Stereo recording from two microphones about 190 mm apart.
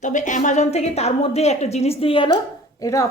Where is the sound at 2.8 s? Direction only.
15° left (ahead or behind).